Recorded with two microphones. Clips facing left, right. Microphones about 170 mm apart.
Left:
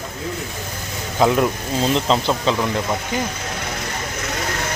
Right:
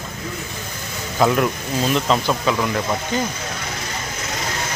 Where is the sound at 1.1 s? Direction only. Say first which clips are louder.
Left 1 dB; 15° left (ahead or behind).